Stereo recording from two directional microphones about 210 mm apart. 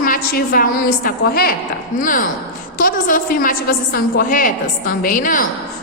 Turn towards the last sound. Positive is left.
turn(degrees=40)  # may be behind; listen again after turning